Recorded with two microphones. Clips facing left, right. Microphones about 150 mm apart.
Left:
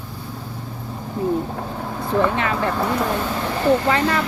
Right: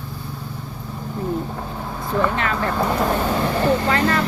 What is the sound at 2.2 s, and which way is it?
Speech, 20° left (ahead or behind).